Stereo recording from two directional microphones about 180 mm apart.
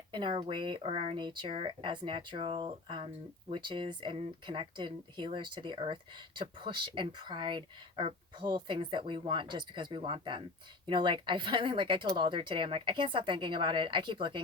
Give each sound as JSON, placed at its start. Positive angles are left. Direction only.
{"t": 0.1, "sound": "speech", "side_deg": -25}